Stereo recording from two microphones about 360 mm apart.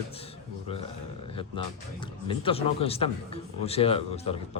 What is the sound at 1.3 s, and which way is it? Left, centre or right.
Speech, centre.